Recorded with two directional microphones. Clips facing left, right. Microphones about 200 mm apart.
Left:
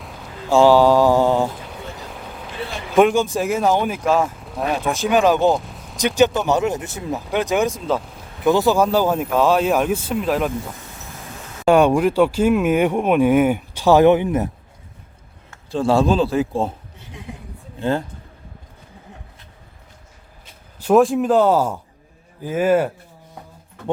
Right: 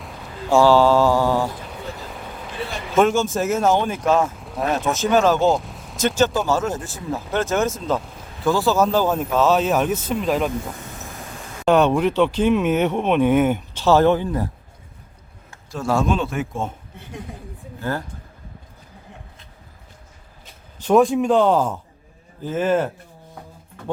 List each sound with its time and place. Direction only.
0.0 s a sound: centre (ahead or behind)
0.6 s speech: 15° left (ahead or behind)
1.5 s a sound: centre (ahead or behind)
3.2 s speech: 15° left (ahead or behind)
4.9 s speech: 15° left (ahead or behind)
5.5 s vehicle: centre (ahead or behind)
6.0 s speech: 15° left (ahead or behind)
8.4 s speech: 15° left (ahead or behind)
11.6 s speech: 10° left (ahead or behind)
15.7 s a man's voice: 30° left (ahead or behind)
17.7 s speech: 25° left (ahead or behind)
20.7 s speech: 5° left (ahead or behind)